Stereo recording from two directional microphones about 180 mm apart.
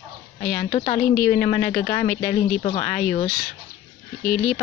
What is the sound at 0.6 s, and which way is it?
Speech, 30° left (ahead or behind).